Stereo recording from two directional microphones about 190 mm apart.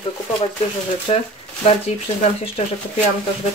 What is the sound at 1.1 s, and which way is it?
Speech, 30° left (ahead or behind).